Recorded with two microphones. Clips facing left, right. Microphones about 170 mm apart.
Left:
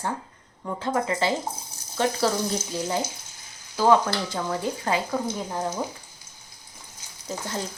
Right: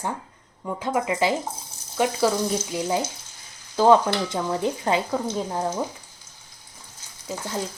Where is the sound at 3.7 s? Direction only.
20° right (ahead or behind).